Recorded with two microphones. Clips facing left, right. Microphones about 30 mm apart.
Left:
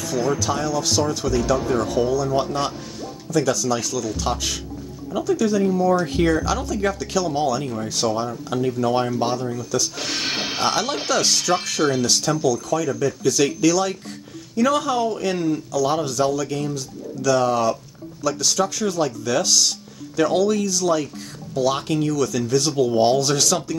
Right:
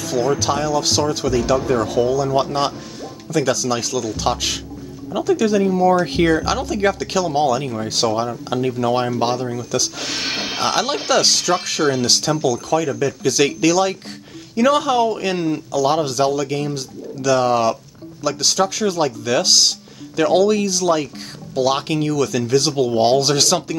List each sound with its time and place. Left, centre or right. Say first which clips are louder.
0.4 s speech: right 4 dB; right
2.0 s speech: right 3 dB; right
2.2 s speech: right 3 dB; right
7.6 s speech: right 2 dB; right
8.0 s speech: right 3 dB; right
8.5 s speech: right 1 dB; right
9.2 s speech: right 3 dB; right
10.0 s speech: right 1 dB; centre
10.3 s a sound: right 1 dB; centre
10.6 s speech: right 3 dB; right